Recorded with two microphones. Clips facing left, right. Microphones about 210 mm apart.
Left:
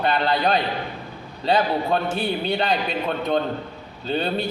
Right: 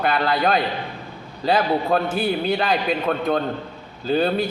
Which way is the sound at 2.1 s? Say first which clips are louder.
Right 2 dB; centre (ahead or behind).